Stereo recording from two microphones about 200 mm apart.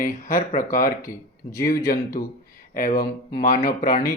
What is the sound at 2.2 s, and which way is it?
Speech, 45° left (ahead or behind).